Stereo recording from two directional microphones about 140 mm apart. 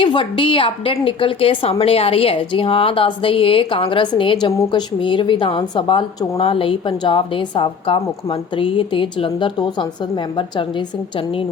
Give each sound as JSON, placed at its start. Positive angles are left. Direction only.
{"t": 0.0, "sound": "a woman's voice", "side_deg": 35}